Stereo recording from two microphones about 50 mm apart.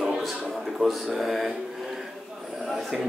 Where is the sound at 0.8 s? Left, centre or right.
Centre.